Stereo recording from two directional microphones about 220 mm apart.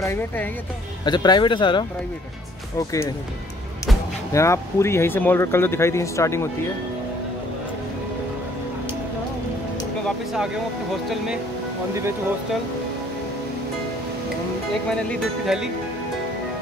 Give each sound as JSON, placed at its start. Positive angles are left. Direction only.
{"t": 0.0, "sound": "speech", "side_deg": 10}
{"t": 4.3, "sound": "speech", "side_deg": 15}
{"t": 10.0, "sound": "speech", "side_deg": 0}
{"t": 15.4, "sound": "speech", "side_deg": 0}